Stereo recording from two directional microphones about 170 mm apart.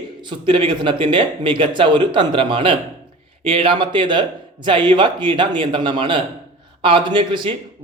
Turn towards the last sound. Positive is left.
turn(degrees=-30)  # may be behind; listen again after turning